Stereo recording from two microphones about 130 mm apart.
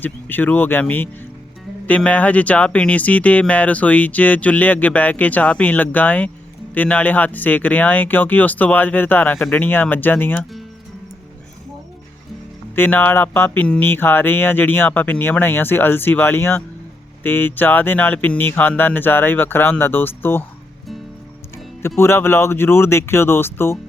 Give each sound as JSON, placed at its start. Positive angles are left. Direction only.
{"t": 0.0, "sound": "speech", "side_deg": 15}
{"t": 12.7, "sound": "speech", "side_deg": 15}
{"t": 21.8, "sound": "speech", "side_deg": 20}